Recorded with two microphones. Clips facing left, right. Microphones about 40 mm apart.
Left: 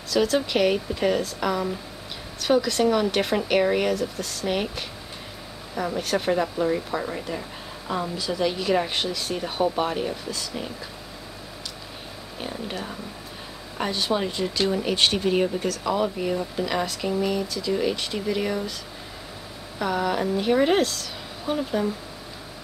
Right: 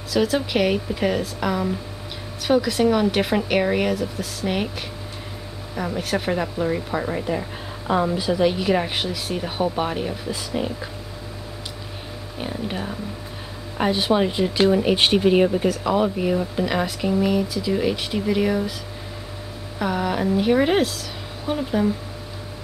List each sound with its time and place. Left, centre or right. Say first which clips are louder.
0.1 s speech: right 1 dB; centre
10.3 s speech: right 6 dB; centre
12.4 s speech: right 4 dB; centre
19.8 s speech: right 1 dB; centre